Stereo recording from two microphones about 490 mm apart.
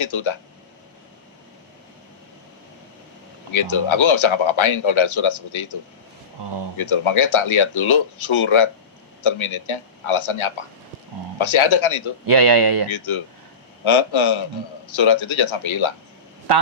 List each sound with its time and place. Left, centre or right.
0.0 s speech: left
3.5 s speech: left
6.7 s speech: left
12.2 s speech: right
12.9 s speech: left